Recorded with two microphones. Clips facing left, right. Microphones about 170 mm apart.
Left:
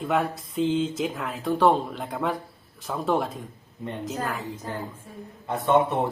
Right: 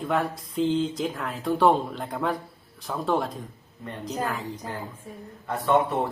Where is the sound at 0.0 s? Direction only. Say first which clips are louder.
Left 1 dB; 5° left (ahead or behind).